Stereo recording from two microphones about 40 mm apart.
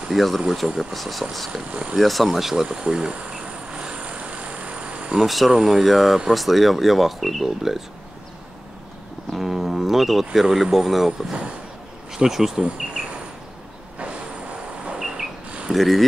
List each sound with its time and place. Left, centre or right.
0.1 s speech: centre
1.7 s speech: right
2.0 s insect: centre; by 5.1 s right
5.1 s speech: centre
9.4 s speech: centre
13.0 s insect: right
15.0 s a sound: centre
15.7 s speech: centre